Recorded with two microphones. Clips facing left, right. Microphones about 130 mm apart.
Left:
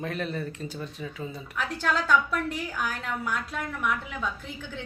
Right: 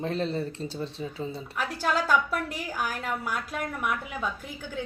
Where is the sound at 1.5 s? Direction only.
5° right (ahead or behind).